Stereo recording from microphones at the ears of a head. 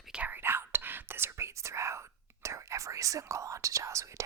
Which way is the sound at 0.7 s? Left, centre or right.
Right.